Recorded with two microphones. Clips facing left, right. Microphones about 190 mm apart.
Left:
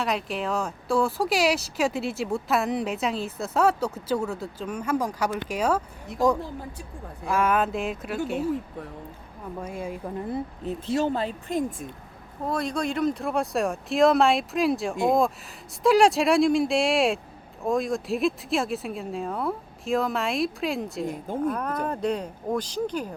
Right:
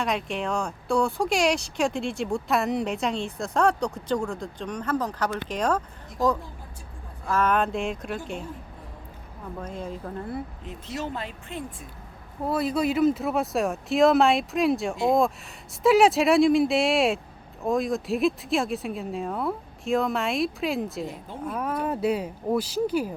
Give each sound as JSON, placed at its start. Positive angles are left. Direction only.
{"t": 0.0, "sound": "speech", "side_deg": 0}
{"t": 9.6, "sound": "speech", "side_deg": 10}
{"t": 10.7, "sound": "speech", "side_deg": 30}
{"t": 12.5, "sound": "speech", "side_deg": -5}